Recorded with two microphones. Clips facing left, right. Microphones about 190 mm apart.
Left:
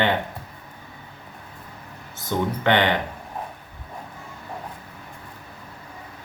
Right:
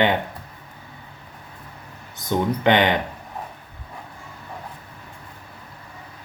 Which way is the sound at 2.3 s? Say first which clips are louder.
Right 2 dB; 15° right (ahead or behind).